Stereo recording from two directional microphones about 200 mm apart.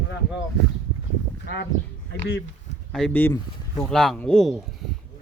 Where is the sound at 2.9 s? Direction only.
5° left (ahead or behind).